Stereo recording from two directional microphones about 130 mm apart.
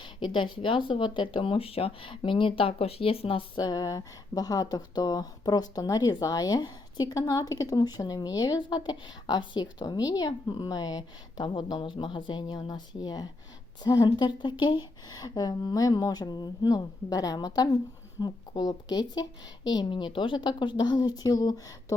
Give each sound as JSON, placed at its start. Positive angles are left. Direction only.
{"t": 0.0, "sound": "a woman's voice", "side_deg": 40}
{"t": 3.6, "sound": "a woman's voice", "side_deg": 30}